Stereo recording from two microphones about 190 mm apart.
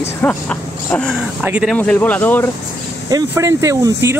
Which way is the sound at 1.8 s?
10° left (ahead or behind).